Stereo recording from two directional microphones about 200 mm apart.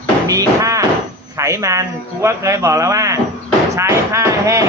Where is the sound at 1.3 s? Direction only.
15° right (ahead or behind).